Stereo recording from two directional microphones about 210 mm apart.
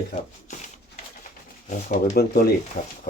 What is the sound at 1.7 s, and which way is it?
Speech, 40° left (ahead or behind).